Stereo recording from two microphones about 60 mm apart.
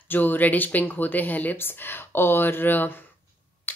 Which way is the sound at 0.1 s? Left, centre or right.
Left.